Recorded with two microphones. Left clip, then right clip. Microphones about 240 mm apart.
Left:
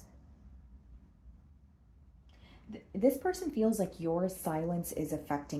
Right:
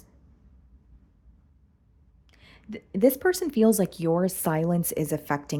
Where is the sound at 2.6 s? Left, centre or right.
Right.